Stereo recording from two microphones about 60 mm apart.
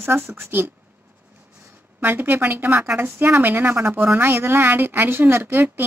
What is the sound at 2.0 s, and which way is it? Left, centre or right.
Speech, right.